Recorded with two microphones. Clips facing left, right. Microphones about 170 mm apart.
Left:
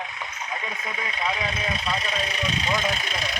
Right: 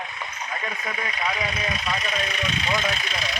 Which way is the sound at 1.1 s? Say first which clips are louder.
Left 1 dB; 30° left (ahead or behind).